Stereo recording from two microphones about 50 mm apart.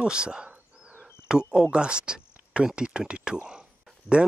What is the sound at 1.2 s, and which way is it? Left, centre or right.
Speech, centre.